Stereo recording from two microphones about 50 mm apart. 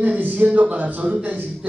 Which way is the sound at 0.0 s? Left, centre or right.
Right.